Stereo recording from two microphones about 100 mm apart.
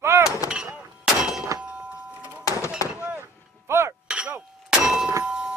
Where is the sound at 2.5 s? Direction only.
30° left (ahead or behind).